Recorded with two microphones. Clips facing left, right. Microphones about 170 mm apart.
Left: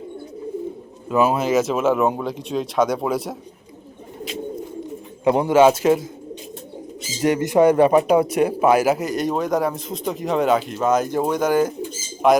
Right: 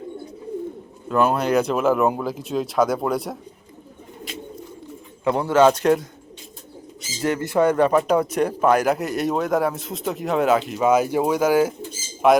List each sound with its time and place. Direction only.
1.0 s speech: 5° left (ahead or behind)
5.2 s a man's voice: 15° left (ahead or behind)
7.2 s speech: 15° left (ahead or behind); by 12.4 s centre (ahead or behind)